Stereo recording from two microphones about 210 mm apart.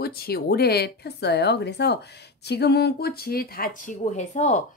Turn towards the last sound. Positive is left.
turn(degrees=35)  # may be behind; listen again after turning